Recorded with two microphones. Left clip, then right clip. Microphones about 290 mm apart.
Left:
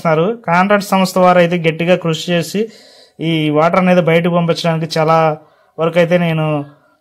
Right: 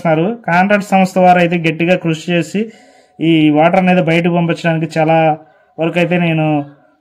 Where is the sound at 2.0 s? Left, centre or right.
Left.